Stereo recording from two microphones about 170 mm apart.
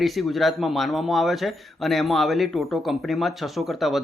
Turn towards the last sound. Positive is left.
turn(degrees=0)  # may be behind; listen again after turning